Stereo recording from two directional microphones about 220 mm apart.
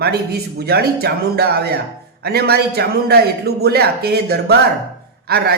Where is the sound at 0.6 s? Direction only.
45° right (ahead or behind).